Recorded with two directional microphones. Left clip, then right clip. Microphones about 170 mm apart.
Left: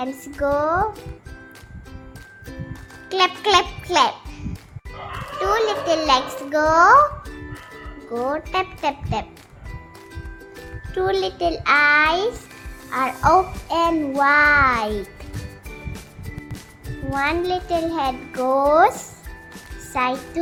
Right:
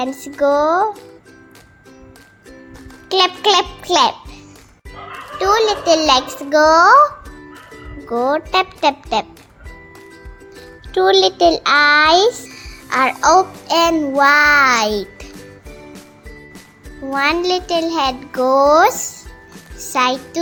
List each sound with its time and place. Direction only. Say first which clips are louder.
0.0 s a child's voice: right 7 dB; 25° right (ahead or behind)
3.1 s a child's voice: right 4 dB; 25° right (ahead or behind)
5.4 s a child's voice: right 6 dB; 25° right (ahead or behind)
8.1 s a child's voice: right 7 dB; 30° right (ahead or behind)
10.9 s a child's voice: right 9 dB; 30° right (ahead or behind)
12.9 s a child's voice: right 5 dB; 20° right (ahead or behind)
17.2 s a child's voice: right 5 dB; 15° right (ahead or behind)